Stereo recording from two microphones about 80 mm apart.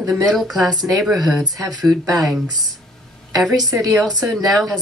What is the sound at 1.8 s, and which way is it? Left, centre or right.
Speech, centre.